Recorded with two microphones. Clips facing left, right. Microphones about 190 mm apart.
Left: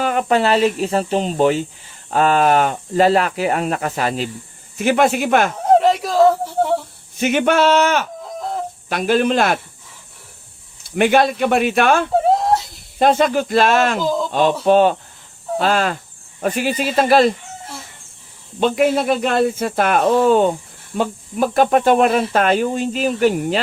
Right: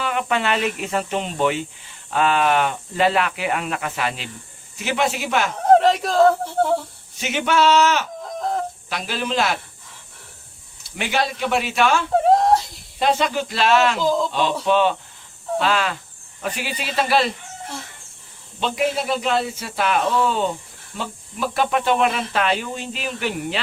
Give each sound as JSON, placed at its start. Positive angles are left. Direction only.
{"t": 0.0, "sound": "speech", "side_deg": 40}
{"t": 4.8, "sound": "speech", "side_deg": 50}
{"t": 5.8, "sound": "speech", "side_deg": 0}
{"t": 7.2, "sound": "speech", "side_deg": 50}
{"t": 8.4, "sound": "chicken", "side_deg": 5}
{"t": 8.9, "sound": "speech", "side_deg": 50}
{"t": 10.9, "sound": "speech", "side_deg": 55}
{"t": 12.1, "sound": "whimper", "side_deg": 0}
{"t": 13.0, "sound": "speech", "side_deg": 50}
{"t": 14.0, "sound": "speech", "side_deg": 0}
{"t": 14.3, "sound": "speech", "side_deg": 45}
{"t": 18.6, "sound": "speech", "side_deg": 50}